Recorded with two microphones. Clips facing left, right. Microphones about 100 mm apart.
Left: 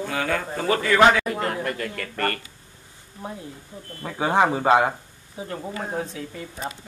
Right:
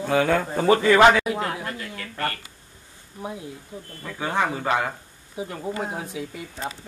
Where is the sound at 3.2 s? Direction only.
10° right (ahead or behind).